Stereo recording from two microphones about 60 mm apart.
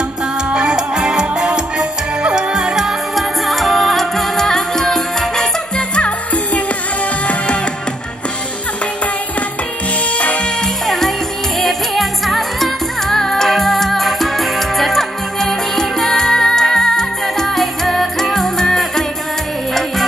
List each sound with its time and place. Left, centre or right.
0.5 s music: centre; by 6.6 s left
10.1 s music: left
10.9 s music: centre